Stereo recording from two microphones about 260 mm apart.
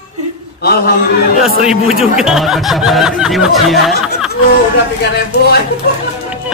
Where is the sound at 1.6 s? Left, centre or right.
Centre.